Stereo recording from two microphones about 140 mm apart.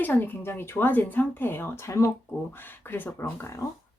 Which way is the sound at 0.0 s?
15° left (ahead or behind).